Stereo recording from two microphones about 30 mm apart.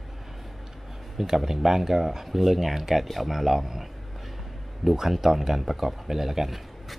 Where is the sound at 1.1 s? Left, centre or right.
Centre.